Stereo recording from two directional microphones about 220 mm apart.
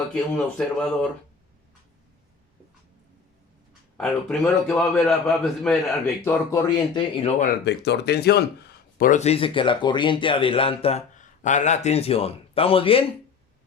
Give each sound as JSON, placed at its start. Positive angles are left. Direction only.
{"t": 0.1, "sound": "a man's voice", "side_deg": 5}
{"t": 3.9, "sound": "a man's voice", "side_deg": 5}
{"t": 7.6, "sound": "speech", "side_deg": 50}